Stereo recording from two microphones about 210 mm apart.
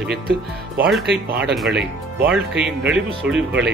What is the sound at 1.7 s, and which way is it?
Speech, 50° right (ahead or behind).